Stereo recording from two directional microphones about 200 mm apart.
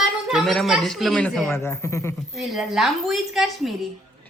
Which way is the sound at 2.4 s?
Centre (ahead or behind).